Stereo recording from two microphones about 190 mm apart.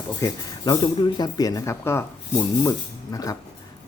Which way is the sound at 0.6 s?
20° left (ahead or behind).